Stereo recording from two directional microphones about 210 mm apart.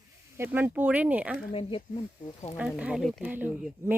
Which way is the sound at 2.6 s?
5° right (ahead or behind).